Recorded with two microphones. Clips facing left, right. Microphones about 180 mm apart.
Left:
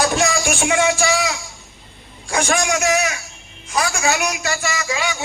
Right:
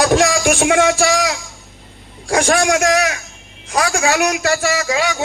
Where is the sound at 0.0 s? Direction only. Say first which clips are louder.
Right 5 dB; 90° right.